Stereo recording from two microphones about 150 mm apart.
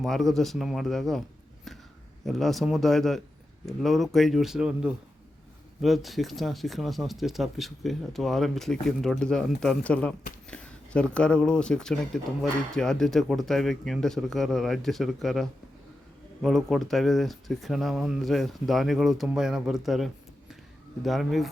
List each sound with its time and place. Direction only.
0.0 s speech: centre (ahead or behind)
1.7 s a sound: centre (ahead or behind)
2.2 s speech: centre (ahead or behind)